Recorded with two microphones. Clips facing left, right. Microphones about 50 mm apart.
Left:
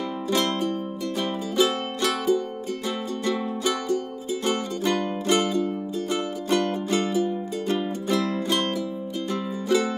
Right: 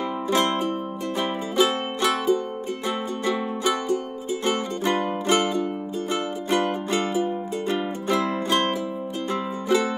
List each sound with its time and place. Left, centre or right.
0.3 s music: right